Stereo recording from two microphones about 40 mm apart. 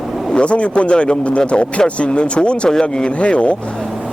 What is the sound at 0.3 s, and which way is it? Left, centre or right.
Speech, left.